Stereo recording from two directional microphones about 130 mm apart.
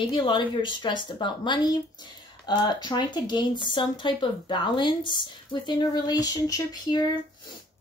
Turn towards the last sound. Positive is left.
turn(degrees=30)  # may be behind; listen again after turning